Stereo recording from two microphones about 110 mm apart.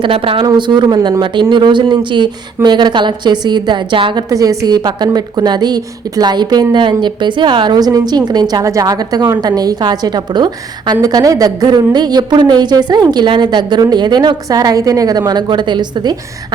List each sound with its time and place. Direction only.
0.0 s a woman's voice: 55° right (ahead or behind)
0.4 s a woman's voice: 40° right (ahead or behind)
4.3 s a woman's voice: 35° right (ahead or behind)